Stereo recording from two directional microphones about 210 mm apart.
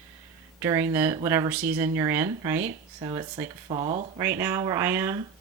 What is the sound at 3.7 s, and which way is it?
Speech, 30° right (ahead or behind).